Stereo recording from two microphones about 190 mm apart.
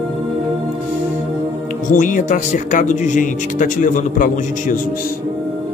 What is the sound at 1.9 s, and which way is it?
Speech, 45° left (ahead or behind).